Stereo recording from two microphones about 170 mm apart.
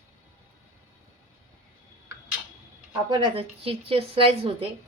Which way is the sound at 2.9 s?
25° right (ahead or behind).